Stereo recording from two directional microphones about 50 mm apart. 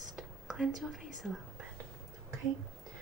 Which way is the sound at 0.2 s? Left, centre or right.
Centre.